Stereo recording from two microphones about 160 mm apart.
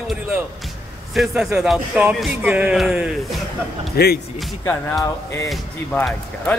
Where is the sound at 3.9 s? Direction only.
80° left.